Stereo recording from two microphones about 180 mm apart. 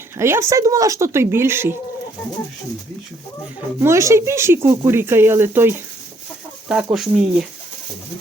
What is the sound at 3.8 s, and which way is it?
Speech, 15° right (ahead or behind).